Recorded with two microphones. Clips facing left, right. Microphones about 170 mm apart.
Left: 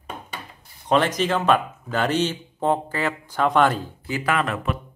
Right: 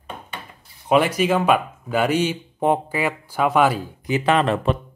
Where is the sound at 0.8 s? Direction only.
10° right (ahead or behind); by 4.7 s 30° right (ahead or behind).